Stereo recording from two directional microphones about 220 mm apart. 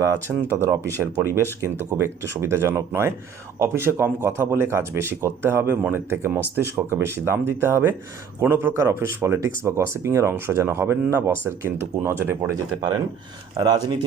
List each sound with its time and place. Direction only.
0.0 s speech: 10° right (ahead or behind)